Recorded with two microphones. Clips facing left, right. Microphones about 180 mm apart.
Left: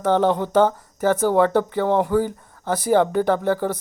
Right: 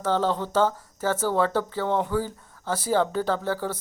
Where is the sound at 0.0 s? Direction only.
15° left (ahead or behind).